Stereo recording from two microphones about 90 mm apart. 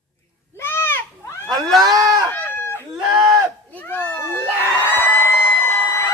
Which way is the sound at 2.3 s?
20° left (ahead or behind).